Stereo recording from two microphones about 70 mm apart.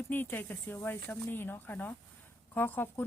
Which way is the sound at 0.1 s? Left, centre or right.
Left.